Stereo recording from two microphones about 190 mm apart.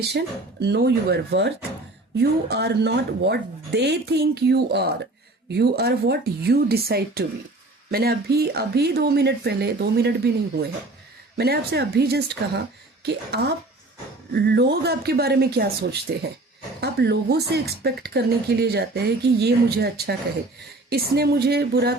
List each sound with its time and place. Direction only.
0.6 s speech: 60° right (ahead or behind)
11.3 s speech: 55° right (ahead or behind)